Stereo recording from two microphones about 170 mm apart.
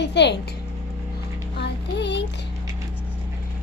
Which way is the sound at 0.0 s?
90° left.